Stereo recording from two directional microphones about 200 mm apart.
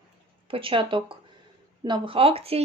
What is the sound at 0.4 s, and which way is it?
Speech, 25° right (ahead or behind).